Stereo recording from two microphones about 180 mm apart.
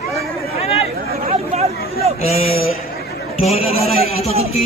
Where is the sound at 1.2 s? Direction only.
35° right (ahead or behind).